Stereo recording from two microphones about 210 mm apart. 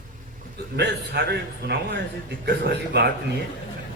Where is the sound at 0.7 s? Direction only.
50° right (ahead or behind).